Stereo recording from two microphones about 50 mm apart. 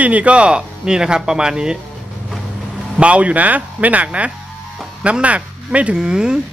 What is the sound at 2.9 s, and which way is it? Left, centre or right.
Speech, right.